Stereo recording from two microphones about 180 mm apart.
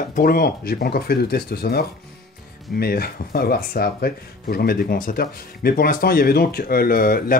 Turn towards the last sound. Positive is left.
turn(degrees=55)  # may be behind; listen again after turning